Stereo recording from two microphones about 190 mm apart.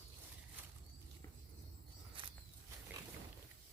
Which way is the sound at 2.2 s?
25° right (ahead or behind).